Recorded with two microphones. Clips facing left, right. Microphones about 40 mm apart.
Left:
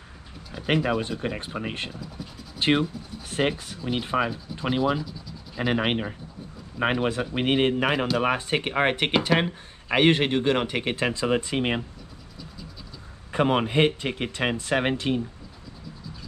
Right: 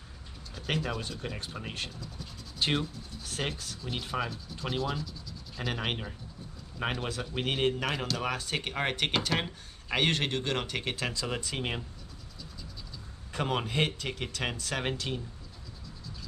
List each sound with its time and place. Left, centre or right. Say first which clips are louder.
0.5 s speech: left 9 dB; left
13.3 s speech: left 9 dB; left